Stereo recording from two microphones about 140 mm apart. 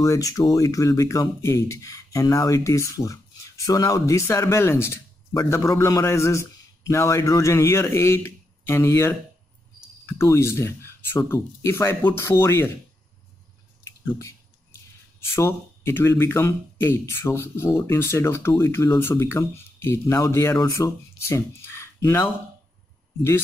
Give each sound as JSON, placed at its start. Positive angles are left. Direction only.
{"t": 0.0, "sound": "speech", "side_deg": 25}
{"t": 15.1, "sound": "speech", "side_deg": 20}